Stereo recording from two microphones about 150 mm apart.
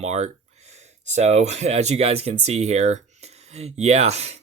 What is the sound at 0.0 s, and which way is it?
Speech, 45° right (ahead or behind).